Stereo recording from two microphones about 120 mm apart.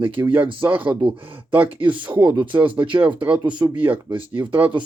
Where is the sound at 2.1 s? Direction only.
15° right (ahead or behind).